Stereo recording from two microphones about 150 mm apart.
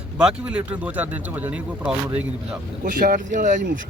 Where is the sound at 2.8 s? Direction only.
65° right (ahead or behind).